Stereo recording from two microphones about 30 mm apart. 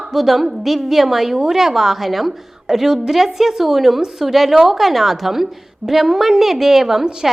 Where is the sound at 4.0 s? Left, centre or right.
Centre.